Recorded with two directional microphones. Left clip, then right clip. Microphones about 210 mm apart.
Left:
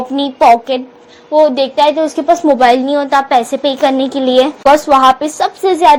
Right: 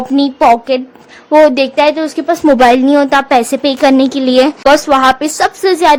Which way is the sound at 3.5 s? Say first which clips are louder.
Right 1 dB; 50° right (ahead or behind).